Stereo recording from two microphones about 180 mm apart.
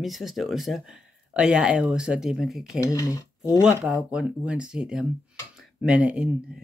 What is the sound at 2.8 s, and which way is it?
Speech, 20° left (ahead or behind).